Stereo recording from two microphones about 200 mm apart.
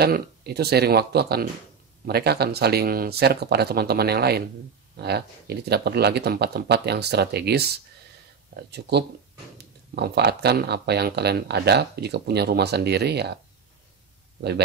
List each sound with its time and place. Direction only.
0.0 s speech: 55° right (ahead or behind)